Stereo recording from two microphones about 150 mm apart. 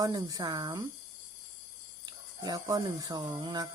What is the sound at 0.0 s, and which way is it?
Speech, 25° right (ahead or behind).